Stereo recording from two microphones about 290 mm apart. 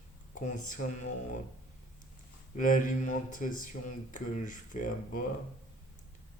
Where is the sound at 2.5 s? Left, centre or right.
Left.